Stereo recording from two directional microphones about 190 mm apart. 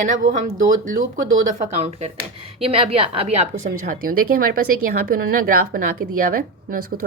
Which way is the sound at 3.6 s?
45° right (ahead or behind).